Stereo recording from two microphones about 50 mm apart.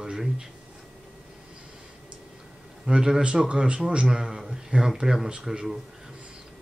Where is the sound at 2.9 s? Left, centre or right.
Centre.